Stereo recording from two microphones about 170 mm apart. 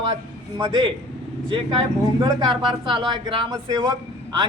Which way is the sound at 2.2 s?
30° right (ahead or behind).